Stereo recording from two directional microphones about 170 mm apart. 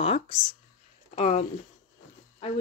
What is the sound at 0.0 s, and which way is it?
Speech, 30° left (ahead or behind).